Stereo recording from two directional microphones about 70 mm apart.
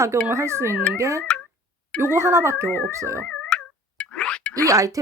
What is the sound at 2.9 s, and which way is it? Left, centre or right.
Speech, right.